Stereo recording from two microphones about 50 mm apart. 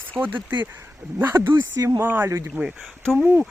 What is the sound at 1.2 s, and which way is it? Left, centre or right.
Speech, right.